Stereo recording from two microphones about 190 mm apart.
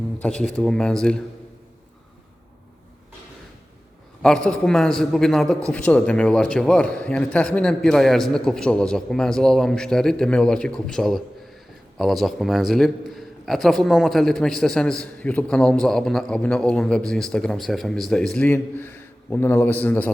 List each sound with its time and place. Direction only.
0.2 s a man's voice: 5° left (ahead or behind)
4.2 s a man's voice: 5° left (ahead or behind)